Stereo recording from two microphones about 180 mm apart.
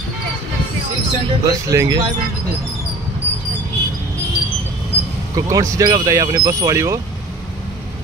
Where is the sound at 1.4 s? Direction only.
20° right (ahead or behind).